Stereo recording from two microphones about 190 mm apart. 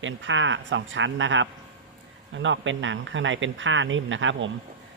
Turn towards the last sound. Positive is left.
turn(degrees=-85)